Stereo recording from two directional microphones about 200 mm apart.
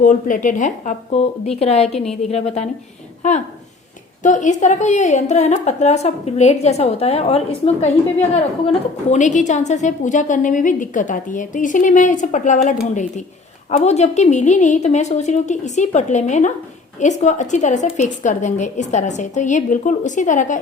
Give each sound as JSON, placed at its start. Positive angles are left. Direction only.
{"t": 0.0, "sound": "a woman's voice", "side_deg": 40}
{"t": 1.9, "sound": "a woman's voice", "side_deg": 0}
{"t": 2.3, "sound": "a woman's voice", "side_deg": 35}
{"t": 4.2, "sound": "a woman's voice", "side_deg": 40}